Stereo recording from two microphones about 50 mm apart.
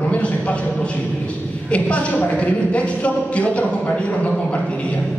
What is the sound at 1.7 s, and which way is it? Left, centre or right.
Speech, left.